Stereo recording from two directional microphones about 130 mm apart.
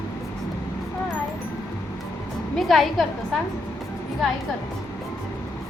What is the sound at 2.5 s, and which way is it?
Speech, centre (ahead or behind).